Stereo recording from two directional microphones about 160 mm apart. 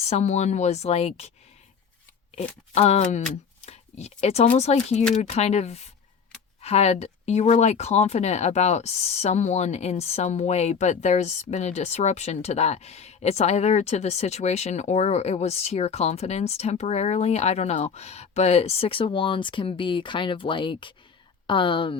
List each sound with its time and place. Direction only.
0.0 s speech: 45° left (ahead or behind)
2.7 s speech: 40° left (ahead or behind)